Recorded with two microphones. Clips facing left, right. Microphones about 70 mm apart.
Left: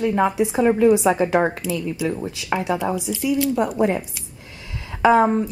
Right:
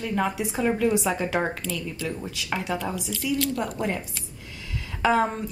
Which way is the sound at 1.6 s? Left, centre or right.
Centre.